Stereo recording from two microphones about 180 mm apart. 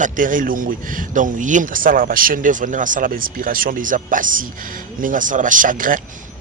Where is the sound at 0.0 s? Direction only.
50° right (ahead or behind).